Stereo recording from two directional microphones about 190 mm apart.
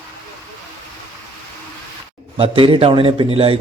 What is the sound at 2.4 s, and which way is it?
A man's voice, 25° right (ahead or behind).